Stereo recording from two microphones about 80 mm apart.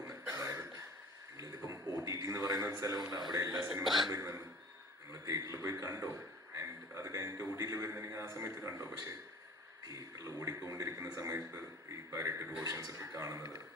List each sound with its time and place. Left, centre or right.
0.1 s cough: right
1.4 s a sound: right
2.6 s a man's voice: right
3.2 s speech: right
3.8 s speech: centre
4.1 s speech: right
5.2 s a sound: right
5.8 s a man's voice: right
9.9 s a sound: right
10.4 s a man's voice: right
12.6 s a man's voice: right